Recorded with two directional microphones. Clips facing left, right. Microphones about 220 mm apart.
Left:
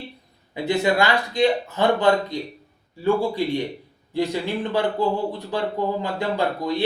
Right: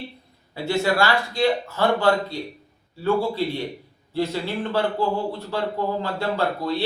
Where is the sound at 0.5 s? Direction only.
15° left (ahead or behind).